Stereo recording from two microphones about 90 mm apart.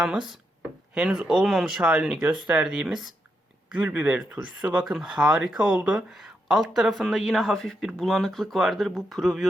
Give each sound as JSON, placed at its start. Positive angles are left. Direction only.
{"t": 0.6, "sound": "wood", "side_deg": -15}
{"t": 1.5, "sound": "a man's voice", "side_deg": 0}
{"t": 6.1, "sound": "a man's voice", "side_deg": 0}